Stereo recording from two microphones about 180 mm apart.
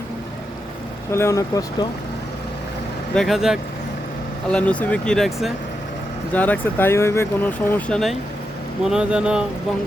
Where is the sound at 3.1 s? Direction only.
Centre (ahead or behind).